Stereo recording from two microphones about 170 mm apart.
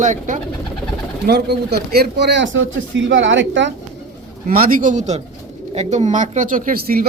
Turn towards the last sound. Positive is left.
turn(degrees=-60)  # may be behind; listen again after turning